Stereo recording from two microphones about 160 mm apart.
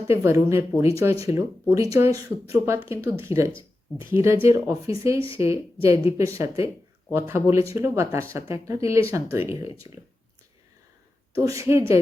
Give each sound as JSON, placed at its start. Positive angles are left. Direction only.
{"t": 0.1, "sound": "speech", "side_deg": -15}
{"t": 11.3, "sound": "speech", "side_deg": -20}